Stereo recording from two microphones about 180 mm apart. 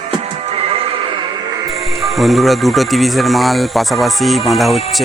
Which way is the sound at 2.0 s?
Centre (ahead or behind).